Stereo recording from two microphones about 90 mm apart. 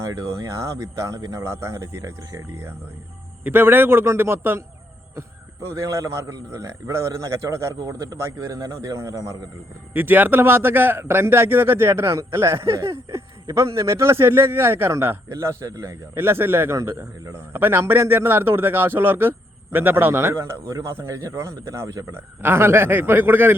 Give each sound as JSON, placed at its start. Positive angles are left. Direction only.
{"t": 0.0, "sound": "a man's voice", "side_deg": -35}
{"t": 5.7, "sound": "a man's voice", "side_deg": -35}
{"t": 9.9, "sound": "a man's voice", "side_deg": -20}